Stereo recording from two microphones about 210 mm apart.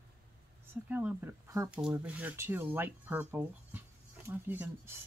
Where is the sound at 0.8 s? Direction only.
10° right (ahead or behind).